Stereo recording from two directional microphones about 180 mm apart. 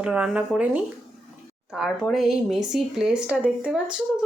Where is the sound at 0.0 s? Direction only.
5° right (ahead or behind).